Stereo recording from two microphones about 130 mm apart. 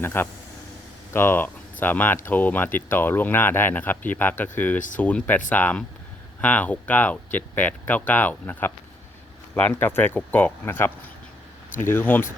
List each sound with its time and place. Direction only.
0.0 s speech: 15° left (ahead or behind)